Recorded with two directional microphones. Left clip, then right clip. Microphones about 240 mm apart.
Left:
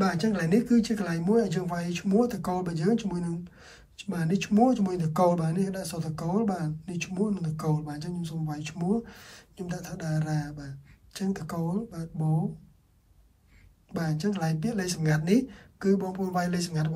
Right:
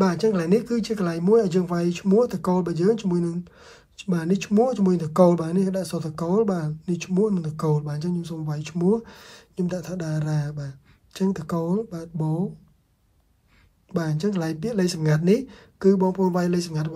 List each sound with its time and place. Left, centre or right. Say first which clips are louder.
0.0 s speech: right 6 dB; centre
13.9 s speech: right 5 dB; centre